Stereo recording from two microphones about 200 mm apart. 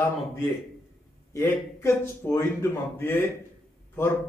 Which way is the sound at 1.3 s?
10° left (ahead or behind).